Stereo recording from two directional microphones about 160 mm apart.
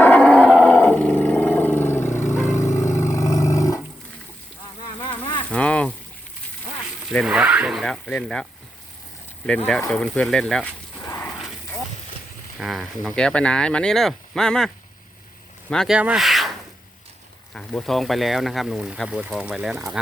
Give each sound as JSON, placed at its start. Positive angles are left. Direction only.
{"t": 0.0, "sound": "roar", "side_deg": 10}
{"t": 5.5, "sound": "a sound", "side_deg": 5}
{"t": 7.1, "sound": "speech", "side_deg": -5}
{"t": 9.9, "sound": "speech", "side_deg": 5}
{"t": 11.0, "sound": "a sound", "side_deg": 20}
{"t": 11.3, "sound": "a sound", "side_deg": -5}
{"t": 12.5, "sound": "speech", "side_deg": 0}
{"t": 15.7, "sound": "speech", "side_deg": 5}
{"t": 17.5, "sound": "speech", "side_deg": 5}